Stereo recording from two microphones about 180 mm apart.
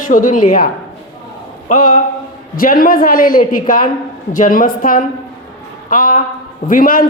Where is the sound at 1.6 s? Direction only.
50° left (ahead or behind).